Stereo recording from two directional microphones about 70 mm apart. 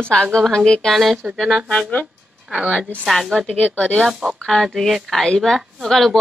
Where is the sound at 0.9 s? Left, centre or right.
Centre.